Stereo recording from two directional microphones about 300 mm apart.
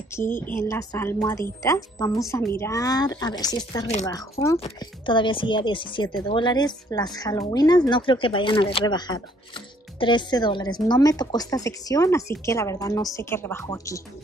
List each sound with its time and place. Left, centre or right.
0.3 s speech: centre